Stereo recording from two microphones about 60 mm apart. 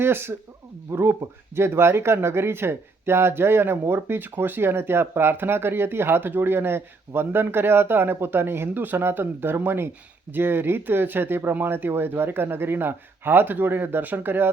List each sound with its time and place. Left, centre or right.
0.0 s speech: right